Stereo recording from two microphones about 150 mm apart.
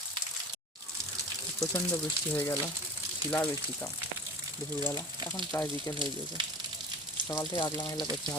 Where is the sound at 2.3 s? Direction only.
15° left (ahead or behind).